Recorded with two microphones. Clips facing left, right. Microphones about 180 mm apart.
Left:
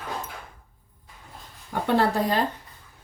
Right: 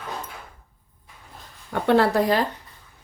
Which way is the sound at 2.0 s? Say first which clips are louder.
Right 3 dB; 80° right.